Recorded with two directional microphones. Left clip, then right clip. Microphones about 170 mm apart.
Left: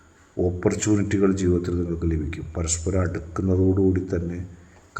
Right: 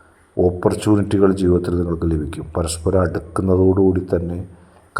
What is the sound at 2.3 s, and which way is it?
Speech, 25° right (ahead or behind).